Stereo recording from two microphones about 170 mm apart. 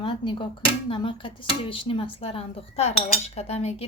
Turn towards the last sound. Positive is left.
turn(degrees=40)  # may be behind; listen again after turning